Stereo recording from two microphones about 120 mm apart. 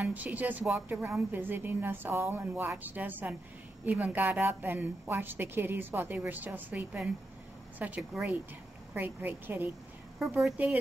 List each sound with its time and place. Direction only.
0.0 s a woman's voice: 15° right (ahead or behind)
10.1 s a woman's voice: 5° right (ahead or behind)